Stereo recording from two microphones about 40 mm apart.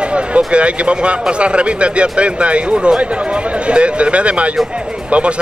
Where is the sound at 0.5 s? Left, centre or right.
Right.